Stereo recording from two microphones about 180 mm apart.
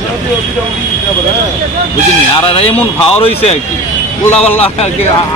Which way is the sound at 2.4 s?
30° left (ahead or behind).